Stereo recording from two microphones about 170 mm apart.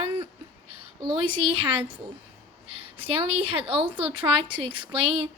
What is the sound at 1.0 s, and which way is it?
A woman's voice, 30° right (ahead or behind).